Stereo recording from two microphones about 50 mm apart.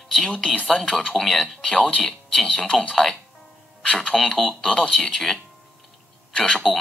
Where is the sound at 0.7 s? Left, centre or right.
Centre.